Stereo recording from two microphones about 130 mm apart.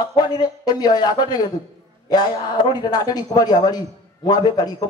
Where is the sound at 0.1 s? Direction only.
30° left (ahead or behind).